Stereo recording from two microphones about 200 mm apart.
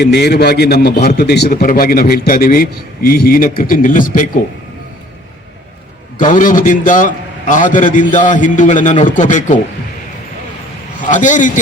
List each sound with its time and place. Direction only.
0.0 s a man's voice: 55° left (ahead or behind)
6.1 s a man's voice: 40° left (ahead or behind)
11.0 s a man's voice: 40° left (ahead or behind)